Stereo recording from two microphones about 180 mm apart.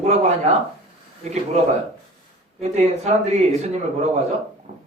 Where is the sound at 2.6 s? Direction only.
35° right (ahead or behind).